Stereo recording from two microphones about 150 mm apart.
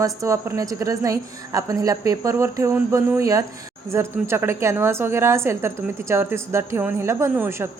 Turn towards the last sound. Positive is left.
turn(degrees=-15)  # may be behind; listen again after turning